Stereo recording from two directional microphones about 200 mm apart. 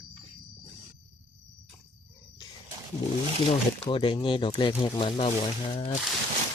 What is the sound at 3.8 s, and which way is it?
Speech, 25° left (ahead or behind).